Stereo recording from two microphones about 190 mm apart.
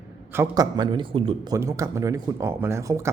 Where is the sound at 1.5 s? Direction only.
15° right (ahead or behind).